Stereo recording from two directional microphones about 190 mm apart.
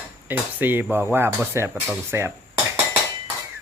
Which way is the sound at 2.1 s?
15° right (ahead or behind).